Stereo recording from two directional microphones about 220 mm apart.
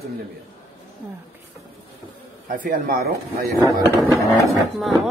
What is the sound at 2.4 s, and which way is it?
Speech, 40° right (ahead or behind).